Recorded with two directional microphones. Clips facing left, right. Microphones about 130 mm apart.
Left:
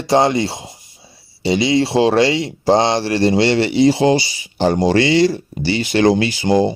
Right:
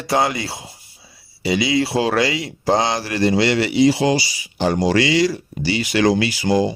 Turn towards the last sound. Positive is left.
turn(degrees=25)  # may be behind; listen again after turning